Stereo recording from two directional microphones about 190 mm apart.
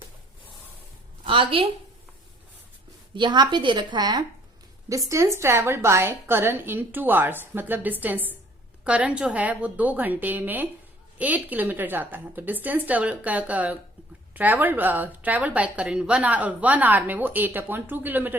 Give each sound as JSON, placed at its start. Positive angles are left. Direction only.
{"t": 1.2, "sound": "a woman's voice", "side_deg": -25}
{"t": 3.2, "sound": "a woman's voice", "side_deg": -25}